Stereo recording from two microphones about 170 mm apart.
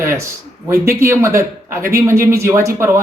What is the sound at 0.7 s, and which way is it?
Speech, 15° right (ahead or behind).